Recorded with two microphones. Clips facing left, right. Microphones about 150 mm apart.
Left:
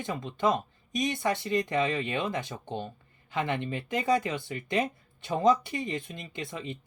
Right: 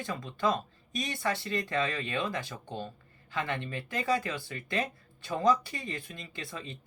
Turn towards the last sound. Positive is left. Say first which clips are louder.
# left 5 dB
turn(degrees=20)  # may be behind; listen again after turning